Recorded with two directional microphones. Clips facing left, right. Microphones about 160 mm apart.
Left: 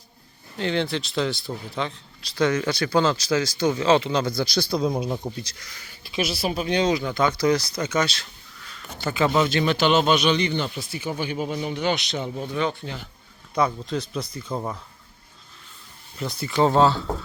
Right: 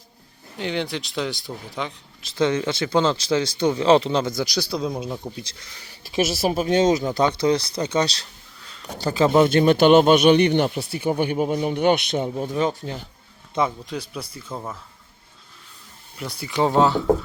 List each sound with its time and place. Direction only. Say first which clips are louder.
0.6 s speech: left 2 dB; 15° right (ahead or behind)
4.7 s speech: left 2 dB; centre (ahead or behind)
5.4 s speech: left 1 dB; 25° right (ahead or behind)
6.1 s speech: right 4 dB; 45° right (ahead or behind)
9.3 s speech: right 6 dB; 50° right (ahead or behind)
13.7 s speech: left 2 dB; 10° right (ahead or behind)
14.5 s speech: left 3 dB; 15° left (ahead or behind)
16.1 s speech: left 1 dB; 10° right (ahead or behind)